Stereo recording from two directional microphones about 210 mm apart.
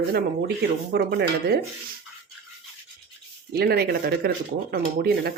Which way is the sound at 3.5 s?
50° right (ahead or behind).